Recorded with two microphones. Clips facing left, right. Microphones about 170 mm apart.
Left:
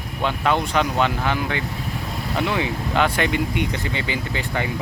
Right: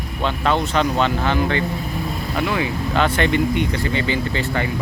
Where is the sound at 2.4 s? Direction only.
20° left (ahead or behind).